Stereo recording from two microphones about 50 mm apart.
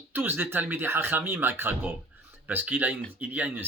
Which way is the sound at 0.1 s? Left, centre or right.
Right.